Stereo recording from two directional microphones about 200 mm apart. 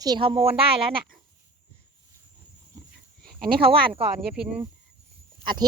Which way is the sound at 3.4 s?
50° right (ahead or behind).